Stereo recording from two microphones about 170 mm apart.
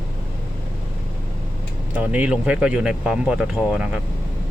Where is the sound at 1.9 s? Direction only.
10° right (ahead or behind).